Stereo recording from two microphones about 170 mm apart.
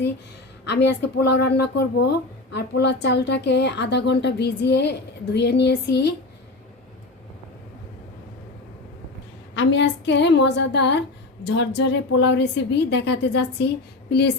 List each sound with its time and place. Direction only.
0.7 s a woman's voice: 85° left
9.6 s a woman's voice: 90° left
14.1 s speech: 75° left (ahead or behind)